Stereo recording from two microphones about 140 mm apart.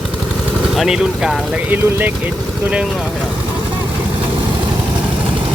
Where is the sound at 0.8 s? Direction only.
5° right (ahead or behind).